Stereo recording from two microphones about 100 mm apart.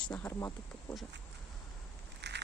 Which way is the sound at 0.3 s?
25° left (ahead or behind).